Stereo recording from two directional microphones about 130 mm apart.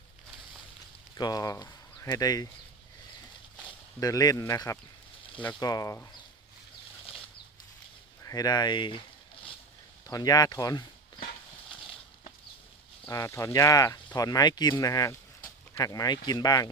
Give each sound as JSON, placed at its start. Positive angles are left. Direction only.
{"t": 1.2, "sound": "speech", "side_deg": 30}
{"t": 4.0, "sound": "speech", "side_deg": 30}
{"t": 8.2, "sound": "speech", "side_deg": 25}
{"t": 10.1, "sound": "speech", "side_deg": 30}
{"t": 13.1, "sound": "speech", "side_deg": 20}